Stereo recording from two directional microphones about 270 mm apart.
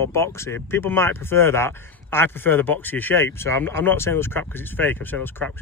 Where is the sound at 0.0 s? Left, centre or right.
Centre.